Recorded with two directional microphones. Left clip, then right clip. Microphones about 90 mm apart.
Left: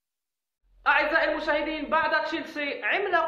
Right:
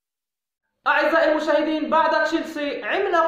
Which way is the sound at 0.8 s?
35° right (ahead or behind).